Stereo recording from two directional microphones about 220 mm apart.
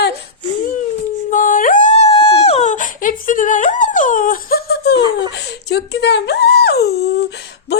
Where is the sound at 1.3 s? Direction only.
35° left (ahead or behind).